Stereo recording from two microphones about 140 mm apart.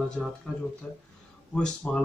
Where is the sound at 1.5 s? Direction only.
5° left (ahead or behind).